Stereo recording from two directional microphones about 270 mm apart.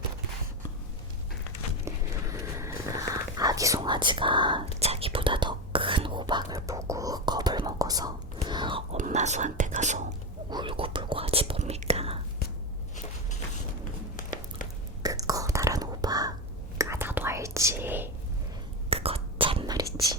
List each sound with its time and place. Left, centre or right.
1.8 s whispering: centre
14.2 s a sound: left
15.0 s whispering: centre
18.9 s whispering: right